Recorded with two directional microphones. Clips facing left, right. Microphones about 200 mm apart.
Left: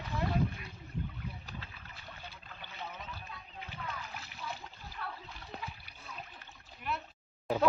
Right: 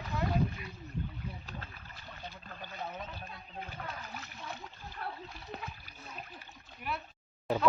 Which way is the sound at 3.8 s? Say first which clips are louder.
Left 2 dB; 45° right (ahead or behind).